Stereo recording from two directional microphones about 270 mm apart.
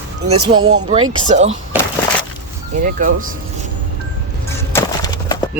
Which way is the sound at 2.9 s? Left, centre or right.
Right.